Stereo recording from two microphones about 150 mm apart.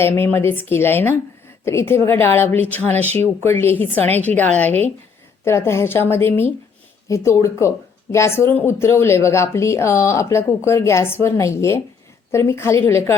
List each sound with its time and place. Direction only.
0.0 s a woman's voice: 15° left (ahead or behind)